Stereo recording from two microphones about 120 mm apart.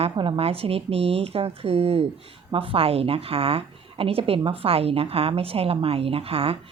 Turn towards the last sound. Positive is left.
turn(degrees=-55)  # may be behind; listen again after turning